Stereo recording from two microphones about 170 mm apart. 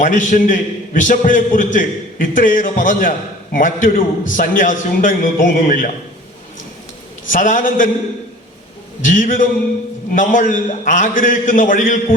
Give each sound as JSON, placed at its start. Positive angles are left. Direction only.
{"t": 0.0, "sound": "a man's voice", "side_deg": 50}
{"t": 7.3, "sound": "a man's voice", "side_deg": 50}
{"t": 9.0, "sound": "a man's voice", "side_deg": 50}